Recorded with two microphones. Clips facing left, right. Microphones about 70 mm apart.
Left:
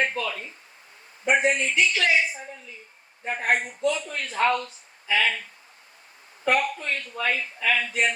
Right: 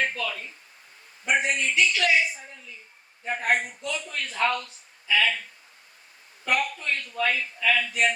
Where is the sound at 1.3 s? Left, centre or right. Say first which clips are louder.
Left 3 dB; left.